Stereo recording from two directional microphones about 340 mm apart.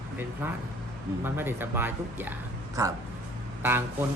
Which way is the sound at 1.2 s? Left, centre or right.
Centre.